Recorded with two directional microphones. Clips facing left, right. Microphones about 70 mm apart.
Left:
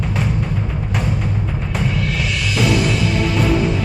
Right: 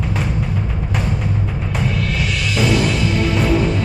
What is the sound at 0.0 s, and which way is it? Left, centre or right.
Music, centre.